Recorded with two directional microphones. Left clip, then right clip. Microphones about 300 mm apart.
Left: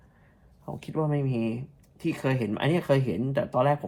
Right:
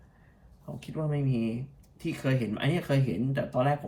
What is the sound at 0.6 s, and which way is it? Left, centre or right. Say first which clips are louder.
Speech: left 6 dB; left.